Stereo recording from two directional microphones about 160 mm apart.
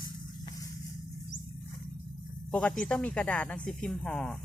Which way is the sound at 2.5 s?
5° left (ahead or behind).